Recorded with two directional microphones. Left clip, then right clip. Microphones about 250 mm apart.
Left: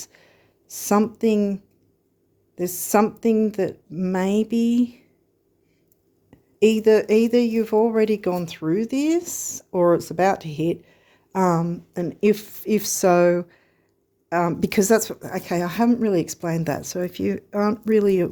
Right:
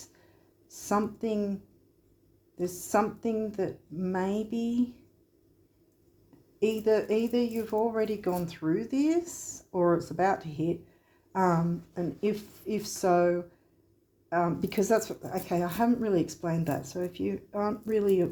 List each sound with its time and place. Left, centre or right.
0.0 s a sound: left
2.6 s a woman's voice: left
6.6 s speech: left